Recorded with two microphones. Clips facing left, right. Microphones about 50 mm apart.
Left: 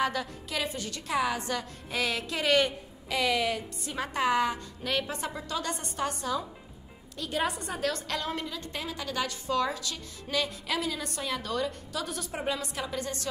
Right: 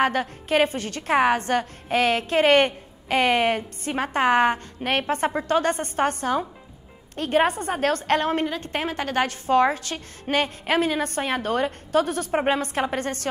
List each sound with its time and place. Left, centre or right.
0.0 s a woman's voice: right